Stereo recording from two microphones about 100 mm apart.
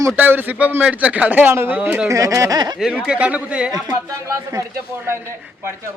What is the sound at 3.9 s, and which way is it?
Speech, 35° right (ahead or behind).